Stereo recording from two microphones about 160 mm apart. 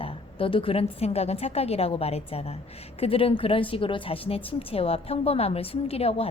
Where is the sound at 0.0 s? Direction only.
35° left (ahead or behind).